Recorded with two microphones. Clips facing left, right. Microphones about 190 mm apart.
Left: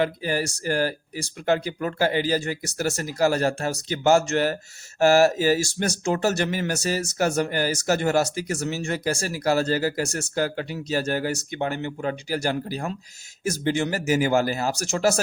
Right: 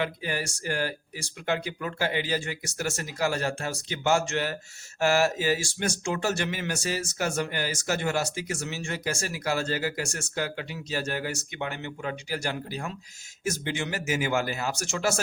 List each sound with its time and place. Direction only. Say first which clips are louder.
0.0 s speech: left 6 dB; 35° left (ahead or behind)